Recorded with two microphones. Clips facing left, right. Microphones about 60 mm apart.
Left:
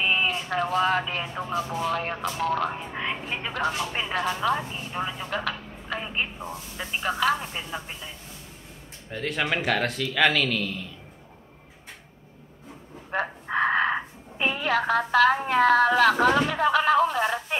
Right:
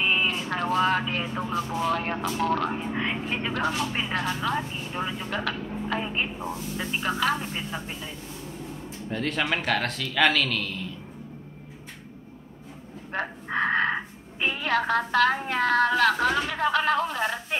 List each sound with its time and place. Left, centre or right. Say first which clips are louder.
0.0 s speech: even; centre
9.1 s speech: even; centre
13.1 s speech: left 2 dB; centre